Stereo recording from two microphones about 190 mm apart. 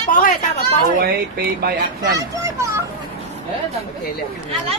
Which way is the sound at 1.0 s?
55° right (ahead or behind).